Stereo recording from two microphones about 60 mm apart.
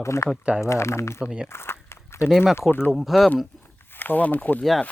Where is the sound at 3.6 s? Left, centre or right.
Left.